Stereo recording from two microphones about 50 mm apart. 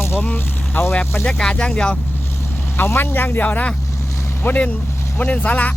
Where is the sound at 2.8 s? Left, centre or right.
Left.